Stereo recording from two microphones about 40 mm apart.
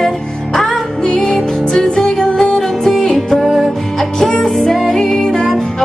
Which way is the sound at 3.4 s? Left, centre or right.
Centre.